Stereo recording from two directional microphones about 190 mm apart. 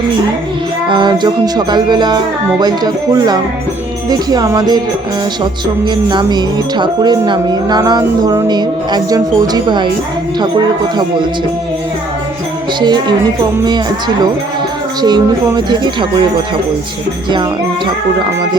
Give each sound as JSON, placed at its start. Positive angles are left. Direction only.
{"t": 0.9, "sound": "music", "side_deg": -25}
{"t": 12.8, "sound": "music", "side_deg": -25}